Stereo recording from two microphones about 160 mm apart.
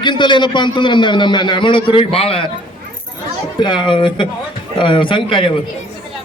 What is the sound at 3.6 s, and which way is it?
Speech, 30° left (ahead or behind).